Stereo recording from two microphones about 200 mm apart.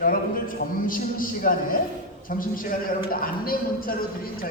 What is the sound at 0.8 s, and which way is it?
Speech, 45° left (ahead or behind).